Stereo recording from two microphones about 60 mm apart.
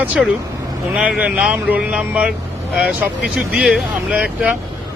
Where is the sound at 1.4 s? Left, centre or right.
Right.